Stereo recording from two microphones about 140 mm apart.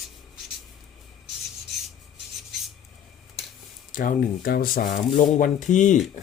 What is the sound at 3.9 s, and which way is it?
Speech, 80° left.